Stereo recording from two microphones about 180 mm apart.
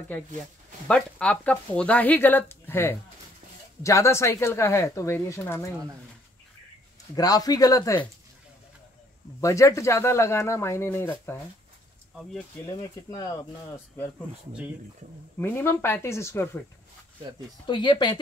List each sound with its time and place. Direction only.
0.8 s speech: 5° left (ahead or behind)
7.2 s speech: 20° left (ahead or behind)
9.4 s speech: 15° left (ahead or behind)
12.6 s speech: 25° left (ahead or behind)
15.3 s speech: 15° left (ahead or behind)
17.6 s speech: 25° left (ahead or behind)